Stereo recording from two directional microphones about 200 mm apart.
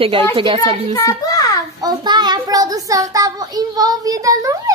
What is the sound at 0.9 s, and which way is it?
Speech, 15° left (ahead or behind).